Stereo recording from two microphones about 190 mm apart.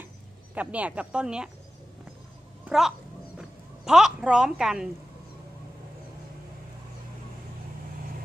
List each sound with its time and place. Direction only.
0.6 s speech: 5° right (ahead or behind)
2.6 s speech: centre (ahead or behind)
3.3 s a sound: centre (ahead or behind)